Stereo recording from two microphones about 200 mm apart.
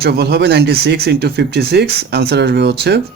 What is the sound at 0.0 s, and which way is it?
Speech, 50° right (ahead or behind).